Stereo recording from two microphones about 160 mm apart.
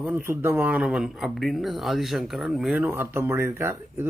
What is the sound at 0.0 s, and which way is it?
Speech, 10° right (ahead or behind).